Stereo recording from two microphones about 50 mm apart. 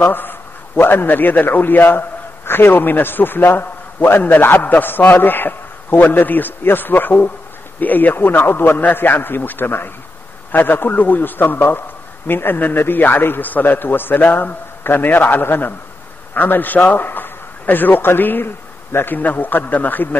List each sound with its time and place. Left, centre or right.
0.0 s a man's voice: left
19.1 s a man's voice: left